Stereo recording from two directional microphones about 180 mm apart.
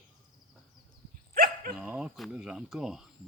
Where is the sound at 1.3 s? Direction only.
55° right (ahead or behind).